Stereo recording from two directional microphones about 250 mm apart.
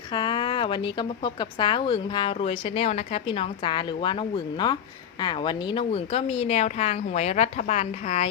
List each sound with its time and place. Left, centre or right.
0.1 s a woman's voice: centre